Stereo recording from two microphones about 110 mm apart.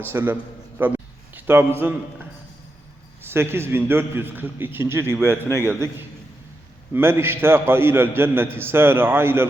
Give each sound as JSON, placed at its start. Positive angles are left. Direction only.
{"t": 0.1, "sound": "a man's voice", "side_deg": -20}
{"t": 0.8, "sound": "a sound", "side_deg": -15}
{"t": 1.8, "sound": "a man's voice", "side_deg": -20}
{"t": 3.2, "sound": "a man's voice", "side_deg": -20}
{"t": 5.5, "sound": "a man's voice", "side_deg": 20}
{"t": 6.9, "sound": "a man's voice", "side_deg": -20}